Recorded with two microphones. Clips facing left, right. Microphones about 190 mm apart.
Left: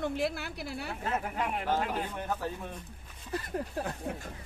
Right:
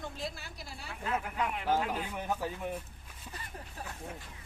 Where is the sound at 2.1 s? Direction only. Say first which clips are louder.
Even; 15° right (ahead or behind).